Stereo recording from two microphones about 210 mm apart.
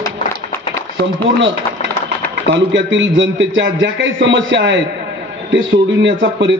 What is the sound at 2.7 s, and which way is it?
A man's voice, 65° right (ahead or behind).